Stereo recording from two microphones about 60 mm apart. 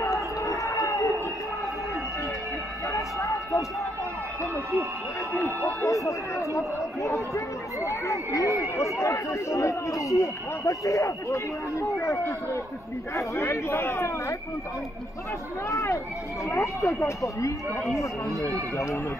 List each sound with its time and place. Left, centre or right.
0.0 s basketball bounce: left
2.9 s a sound: left
5.7 s speech: left
15.7 s speech: left